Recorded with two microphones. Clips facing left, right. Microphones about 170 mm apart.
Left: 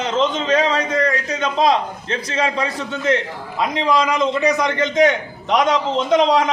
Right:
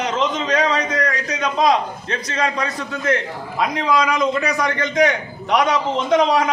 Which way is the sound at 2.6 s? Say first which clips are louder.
Left 2 dB; 25° left (ahead or behind).